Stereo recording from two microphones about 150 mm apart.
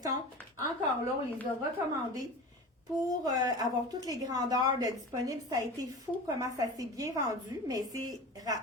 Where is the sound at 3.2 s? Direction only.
25° right (ahead or behind).